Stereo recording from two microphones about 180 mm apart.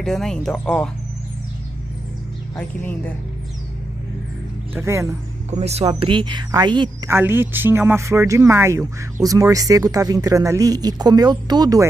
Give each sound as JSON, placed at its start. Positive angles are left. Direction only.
{"t": 0.0, "sound": "speech", "side_deg": 0}
{"t": 2.5, "sound": "speech", "side_deg": 10}
{"t": 4.7, "sound": "speech", "side_deg": -15}
{"t": 5.5, "sound": "speech", "side_deg": -35}
{"t": 7.1, "sound": "speech", "side_deg": -15}